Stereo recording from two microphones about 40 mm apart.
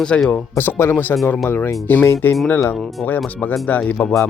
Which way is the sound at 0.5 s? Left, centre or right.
Left.